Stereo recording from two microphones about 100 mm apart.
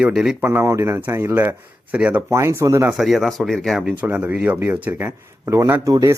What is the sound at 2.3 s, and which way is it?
Speech, 30° right (ahead or behind).